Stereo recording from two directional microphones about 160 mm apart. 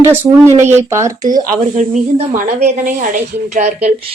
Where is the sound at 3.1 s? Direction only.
50° right (ahead or behind).